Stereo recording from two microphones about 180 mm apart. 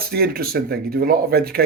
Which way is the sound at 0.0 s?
60° right (ahead or behind).